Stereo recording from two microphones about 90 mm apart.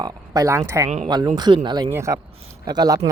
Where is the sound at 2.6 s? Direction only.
50° right (ahead or behind).